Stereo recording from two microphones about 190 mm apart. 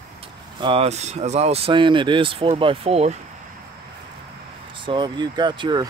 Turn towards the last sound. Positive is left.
turn(degrees=-25)  # may be behind; listen again after turning